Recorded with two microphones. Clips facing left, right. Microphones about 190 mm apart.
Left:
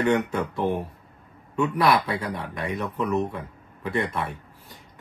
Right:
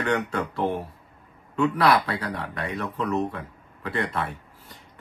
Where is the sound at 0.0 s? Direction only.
15° left (ahead or behind).